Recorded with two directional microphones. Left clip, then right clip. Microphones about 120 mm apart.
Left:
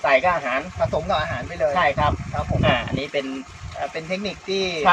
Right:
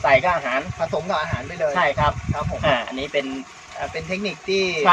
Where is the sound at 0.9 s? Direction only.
30° right (ahead or behind).